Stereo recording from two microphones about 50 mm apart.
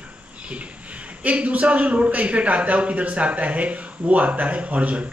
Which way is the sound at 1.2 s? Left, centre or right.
Right.